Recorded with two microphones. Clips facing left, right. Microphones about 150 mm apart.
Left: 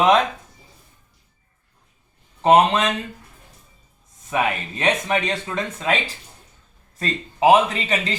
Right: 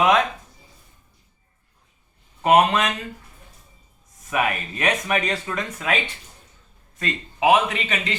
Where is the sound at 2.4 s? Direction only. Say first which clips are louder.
Left 2 dB; 30° left (ahead or behind).